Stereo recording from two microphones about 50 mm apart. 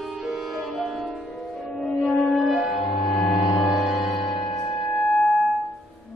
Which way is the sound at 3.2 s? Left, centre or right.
Centre.